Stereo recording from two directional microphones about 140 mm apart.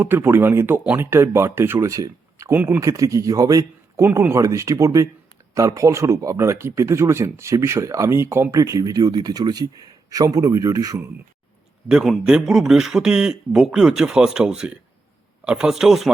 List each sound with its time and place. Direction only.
0.0 s speech: 15° right (ahead or behind)
11.9 s a man's voice: 5° right (ahead or behind)